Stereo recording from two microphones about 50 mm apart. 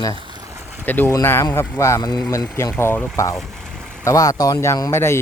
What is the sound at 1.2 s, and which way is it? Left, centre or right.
Speech, left.